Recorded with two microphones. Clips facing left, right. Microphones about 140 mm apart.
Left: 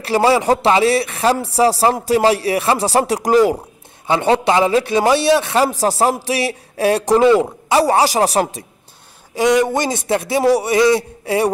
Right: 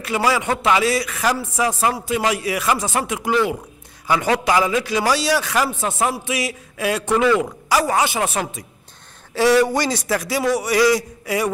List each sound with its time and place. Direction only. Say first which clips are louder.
0.0 s a man's voice: left 6 dB; 30° left (ahead or behind)
4.1 s a man's voice: left 3 dB; 30° left (ahead or behind)
9.3 s a man's voice: left 1 dB; 20° left (ahead or behind)